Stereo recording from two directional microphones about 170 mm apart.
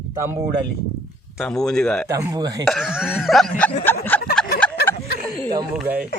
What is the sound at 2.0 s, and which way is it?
Speech, 20° right (ahead or behind).